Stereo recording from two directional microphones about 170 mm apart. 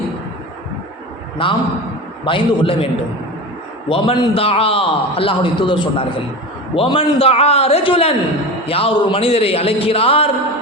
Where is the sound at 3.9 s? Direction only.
35° left (ahead or behind).